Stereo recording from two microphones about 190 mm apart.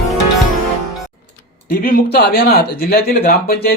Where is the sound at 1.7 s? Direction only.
50° left (ahead or behind).